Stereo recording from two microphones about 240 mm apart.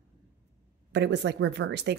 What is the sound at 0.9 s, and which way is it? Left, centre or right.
Speech, right.